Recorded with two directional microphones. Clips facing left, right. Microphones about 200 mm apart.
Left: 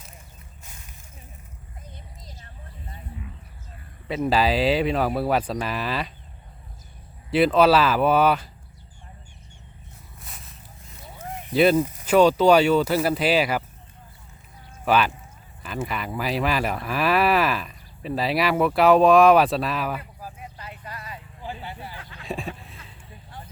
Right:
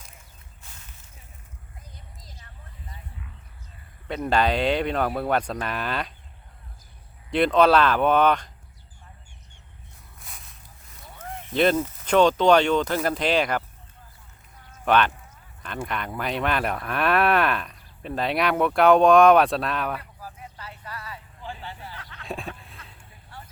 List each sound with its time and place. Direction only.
4.1 s speech: 5° left (ahead or behind)
7.3 s speech: 5° left (ahead or behind)
10.2 s zipper: centre (ahead or behind)
11.2 s speech: 10° left (ahead or behind)
14.8 s speech: 5° left (ahead or behind)
20.2 s vehicle: 15° left (ahead or behind)
22.2 s a sound: centre (ahead or behind)